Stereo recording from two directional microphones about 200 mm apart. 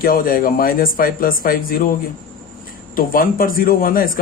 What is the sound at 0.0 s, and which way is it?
Speech, 45° left (ahead or behind).